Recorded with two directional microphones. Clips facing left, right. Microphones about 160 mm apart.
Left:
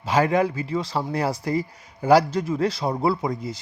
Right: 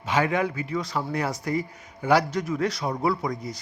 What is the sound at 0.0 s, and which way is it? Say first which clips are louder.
Speech: left 4 dB; 35° left (ahead or behind).